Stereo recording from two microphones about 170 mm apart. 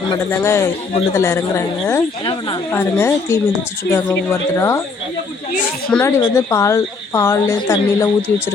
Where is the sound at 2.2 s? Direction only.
30° left (ahead or behind).